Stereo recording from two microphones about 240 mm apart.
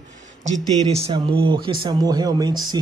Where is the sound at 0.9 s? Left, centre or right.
Right.